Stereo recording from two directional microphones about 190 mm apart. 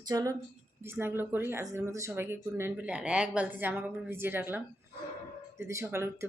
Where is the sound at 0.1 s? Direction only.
20° right (ahead or behind).